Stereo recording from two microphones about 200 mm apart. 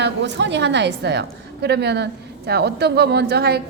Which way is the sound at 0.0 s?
60° right (ahead or behind).